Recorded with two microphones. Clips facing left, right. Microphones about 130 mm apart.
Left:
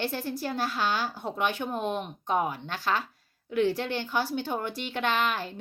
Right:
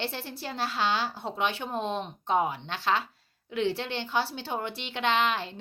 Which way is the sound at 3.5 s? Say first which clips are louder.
Left 3 dB; 45° left (ahead or behind).